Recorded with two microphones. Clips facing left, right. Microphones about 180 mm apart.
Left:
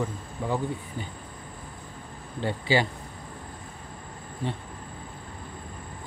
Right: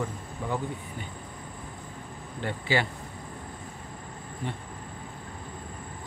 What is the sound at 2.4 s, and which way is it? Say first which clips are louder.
Speech: left 3 dB; 30° left (ahead or behind).